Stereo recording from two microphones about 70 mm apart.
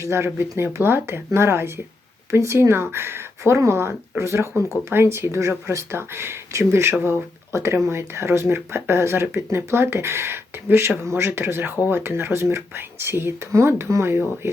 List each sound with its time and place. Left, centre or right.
0.0 s speech: right